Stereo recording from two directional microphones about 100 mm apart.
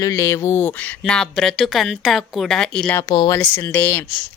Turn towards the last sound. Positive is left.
turn(degrees=20)  # may be behind; listen again after turning